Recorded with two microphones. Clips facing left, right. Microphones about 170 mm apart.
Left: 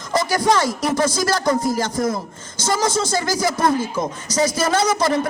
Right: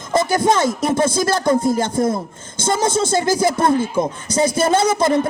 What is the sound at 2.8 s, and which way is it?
Speech, 55° right (ahead or behind).